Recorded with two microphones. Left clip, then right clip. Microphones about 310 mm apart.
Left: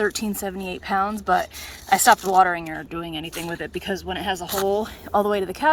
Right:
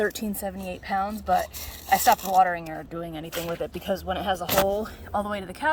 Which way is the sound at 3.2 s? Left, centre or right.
Right.